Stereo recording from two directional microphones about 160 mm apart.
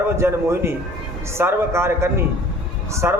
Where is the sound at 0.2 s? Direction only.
15° right (ahead or behind).